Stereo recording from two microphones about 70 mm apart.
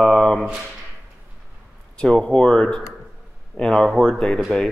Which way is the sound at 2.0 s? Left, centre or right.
Centre.